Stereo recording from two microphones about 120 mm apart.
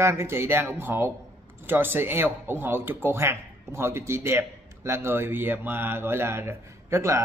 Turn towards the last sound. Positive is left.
turn(degrees=-25)  # may be behind; listen again after turning